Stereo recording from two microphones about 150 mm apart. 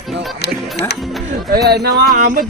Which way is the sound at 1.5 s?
90° right.